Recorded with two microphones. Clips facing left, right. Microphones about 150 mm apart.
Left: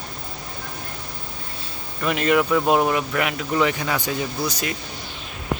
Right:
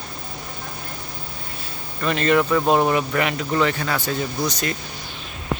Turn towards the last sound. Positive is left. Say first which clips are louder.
# right 1 dB
turn(degrees=10)  # may be behind; listen again after turning